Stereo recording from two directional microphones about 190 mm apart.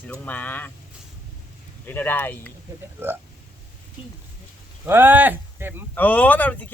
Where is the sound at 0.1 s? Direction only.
10° left (ahead or behind).